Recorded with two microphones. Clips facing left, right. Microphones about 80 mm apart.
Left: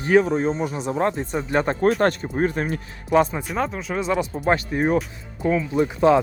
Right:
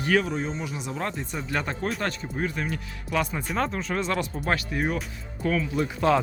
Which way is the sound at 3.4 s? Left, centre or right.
Centre.